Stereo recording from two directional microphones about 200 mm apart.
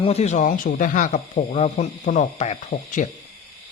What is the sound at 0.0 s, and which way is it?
Speech, 30° left (ahead or behind).